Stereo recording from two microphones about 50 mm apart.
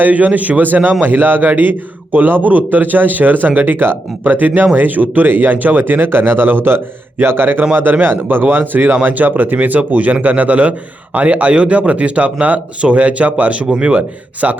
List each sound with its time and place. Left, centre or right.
0.0 s a man's voice: right